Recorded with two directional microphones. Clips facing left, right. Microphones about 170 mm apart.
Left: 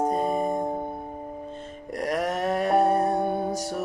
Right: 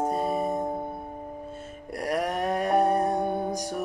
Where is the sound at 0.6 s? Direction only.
15° left (ahead or behind).